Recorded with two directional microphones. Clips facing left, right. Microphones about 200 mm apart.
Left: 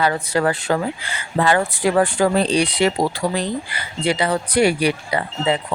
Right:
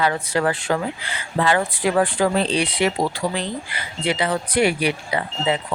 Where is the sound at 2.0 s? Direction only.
45° left (ahead or behind).